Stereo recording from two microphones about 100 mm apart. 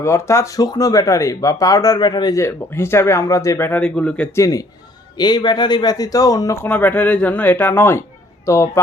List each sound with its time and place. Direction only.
0.0 s speech: 30° left (ahead or behind); by 2.3 s 45° left (ahead or behind)
2.3 s speech: 25° left (ahead or behind)
3.7 s speech: 10° left (ahead or behind)
4.4 s speech: 35° left (ahead or behind)
6.7 s speech: 15° left (ahead or behind)